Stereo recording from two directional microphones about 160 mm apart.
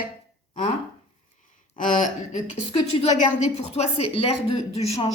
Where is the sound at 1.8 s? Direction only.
55° left (ahead or behind).